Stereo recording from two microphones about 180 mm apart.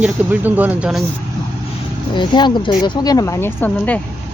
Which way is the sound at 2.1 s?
25° left (ahead or behind).